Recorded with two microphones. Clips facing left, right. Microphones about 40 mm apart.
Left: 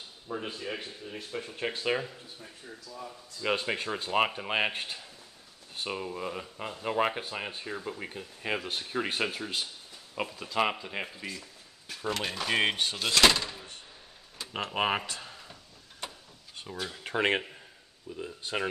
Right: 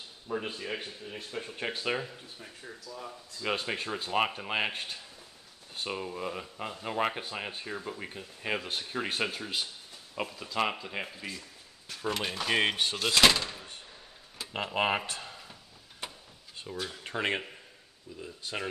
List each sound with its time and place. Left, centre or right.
0.3 s a man's voice: right
1.0 s speech: centre
3.3 s speech: centre
15.2 s a sound: centre
16.6 s speech: centre